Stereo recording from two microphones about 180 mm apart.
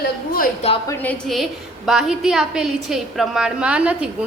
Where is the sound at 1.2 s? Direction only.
Centre (ahead or behind).